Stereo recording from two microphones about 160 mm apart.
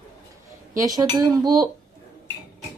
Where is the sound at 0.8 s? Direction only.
25° right (ahead or behind).